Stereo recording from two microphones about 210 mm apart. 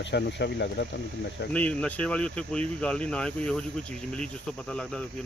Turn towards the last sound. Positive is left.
turn(degrees=5)  # may be behind; listen again after turning